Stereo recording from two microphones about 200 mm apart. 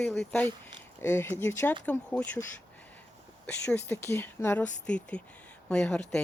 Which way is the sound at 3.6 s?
10° left (ahead or behind).